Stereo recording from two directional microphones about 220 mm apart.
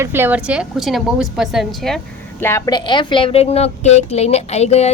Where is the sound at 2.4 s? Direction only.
10° left (ahead or behind).